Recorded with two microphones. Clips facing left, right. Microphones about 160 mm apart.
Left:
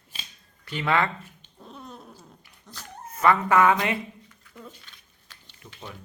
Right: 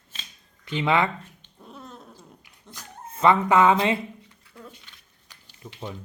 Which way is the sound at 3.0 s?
25° right (ahead or behind).